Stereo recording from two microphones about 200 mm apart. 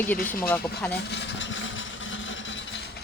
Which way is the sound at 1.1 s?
60° left (ahead or behind).